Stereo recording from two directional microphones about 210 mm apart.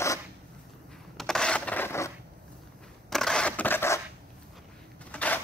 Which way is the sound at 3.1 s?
5° left (ahead or behind).